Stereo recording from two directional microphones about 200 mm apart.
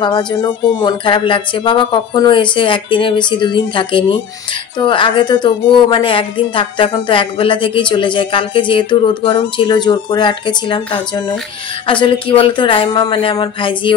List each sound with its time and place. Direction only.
0.0 s a woman's voice: 20° left (ahead or behind)